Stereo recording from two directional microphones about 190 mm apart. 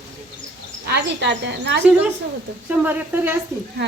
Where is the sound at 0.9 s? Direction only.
65° right (ahead or behind).